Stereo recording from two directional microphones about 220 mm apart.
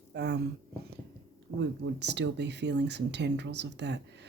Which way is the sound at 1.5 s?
55° right (ahead or behind).